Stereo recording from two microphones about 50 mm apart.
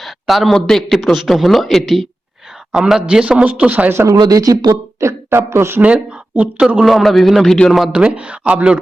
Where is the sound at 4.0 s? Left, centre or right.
Right.